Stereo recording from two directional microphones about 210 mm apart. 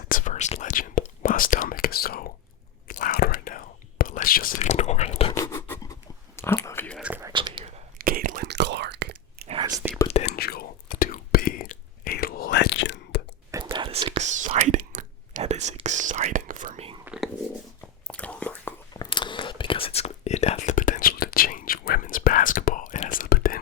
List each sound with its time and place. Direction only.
0.1 s whispering: 40° left (ahead or behind)
5.4 s writing: 10° left (ahead or behind)
7.0 s whispering: 10° right (ahead or behind)
7.9 s whispering: 45° right (ahead or behind)
9.5 s whispering: 20° right (ahead or behind)
10.1 s whispering: 30° left (ahead or behind)
10.3 s whispering: 45° left (ahead or behind)
13.5 s whispering: 20° right (ahead or behind)
18.1 s whispering: 5° left (ahead or behind)
18.9 s whispering: 20° left (ahead or behind); by 23.6 s 45° left (ahead or behind)